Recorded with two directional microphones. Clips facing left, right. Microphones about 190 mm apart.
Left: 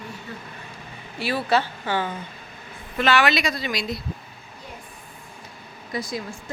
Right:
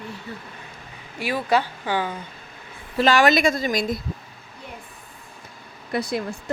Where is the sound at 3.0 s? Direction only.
40° right (ahead or behind).